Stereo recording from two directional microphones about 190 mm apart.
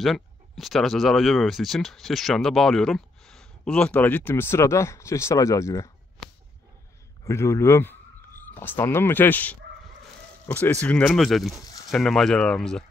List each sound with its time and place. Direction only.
0.0 s speech: centre (ahead or behind); by 5.9 s 15° left (ahead or behind)
7.2 s speech: 15° left (ahead or behind)